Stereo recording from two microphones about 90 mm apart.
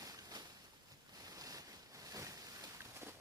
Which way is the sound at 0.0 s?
40° right (ahead or behind).